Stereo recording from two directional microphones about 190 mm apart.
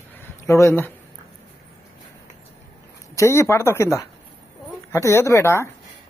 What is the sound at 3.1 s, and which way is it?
A woman's voice, 15° left (ahead or behind).